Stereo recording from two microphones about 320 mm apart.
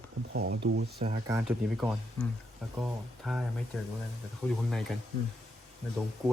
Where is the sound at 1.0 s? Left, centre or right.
Centre.